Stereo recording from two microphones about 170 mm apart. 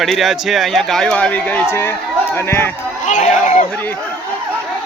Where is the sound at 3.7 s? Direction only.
10° left (ahead or behind).